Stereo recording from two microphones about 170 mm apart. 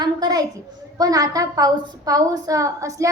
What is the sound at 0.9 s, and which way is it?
A woman's voice, 20° right (ahead or behind).